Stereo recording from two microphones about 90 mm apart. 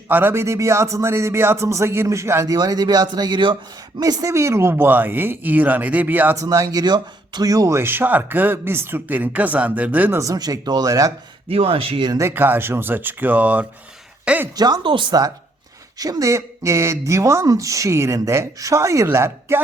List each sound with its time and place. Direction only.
0.1 s speech: 25° right (ahead or behind)
2.5 s speech: 45° right (ahead or behind)
4.0 s speech: 40° right (ahead or behind); by 6.3 s 20° right (ahead or behind)
6.3 s speech: 40° right (ahead or behind)
7.8 s speech: 25° right (ahead or behind)
10.2 s speech: 40° right (ahead or behind)
11.4 s speech: 90° right
12.3 s speech: 25° right (ahead or behind)
14.5 s speech: 50° right (ahead or behind)
16.0 s speech: 45° right (ahead or behind)